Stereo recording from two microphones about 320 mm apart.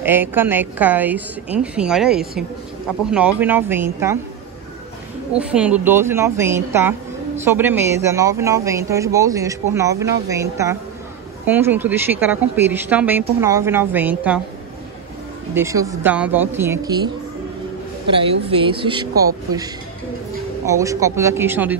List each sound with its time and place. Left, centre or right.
0.0 s a woman's voice: centre
5.3 s speech: centre
15.5 s speech: centre